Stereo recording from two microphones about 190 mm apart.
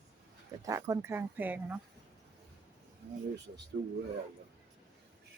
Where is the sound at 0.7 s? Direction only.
15° right (ahead or behind).